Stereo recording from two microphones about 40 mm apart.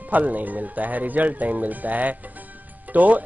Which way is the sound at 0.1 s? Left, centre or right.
Right.